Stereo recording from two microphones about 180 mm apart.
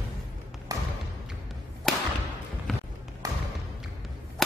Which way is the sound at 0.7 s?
20° right (ahead or behind).